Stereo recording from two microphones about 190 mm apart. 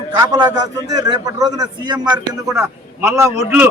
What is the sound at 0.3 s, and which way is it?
A man's voice, 20° right (ahead or behind).